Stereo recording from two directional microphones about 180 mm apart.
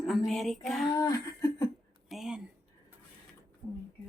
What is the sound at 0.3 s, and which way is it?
Speech, centre (ahead or behind).